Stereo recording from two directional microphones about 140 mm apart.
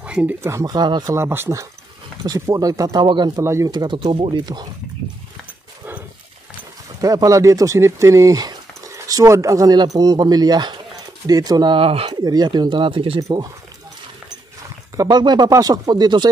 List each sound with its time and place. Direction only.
0.0 s speech: 10° right (ahead or behind); by 3.4 s 35° right (ahead or behind)
3.4 s speech: 20° right (ahead or behind)
3.7 s speech: 30° right (ahead or behind)
7.0 s speech: 25° right (ahead or behind); by 12.1 s 40° right (ahead or behind)
12.1 s speech: 30° right (ahead or behind)
15.0 s speech: 30° right (ahead or behind)